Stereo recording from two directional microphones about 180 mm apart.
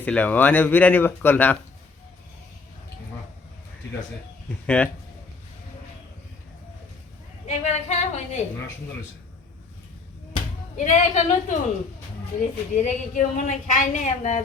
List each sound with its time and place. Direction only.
0.0 s speech: 10° left (ahead or behind)
4.6 s speech: 5° left (ahead or behind)
7.4 s a woman's voice: 40° left (ahead or behind)
10.8 s a woman's voice: 40° left (ahead or behind)